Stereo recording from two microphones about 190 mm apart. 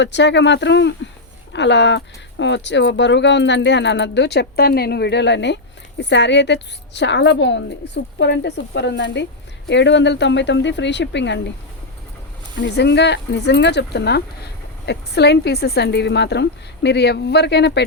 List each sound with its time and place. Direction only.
0.0 s speech: 65° left (ahead or behind)
12.5 s speech: 65° left (ahead or behind)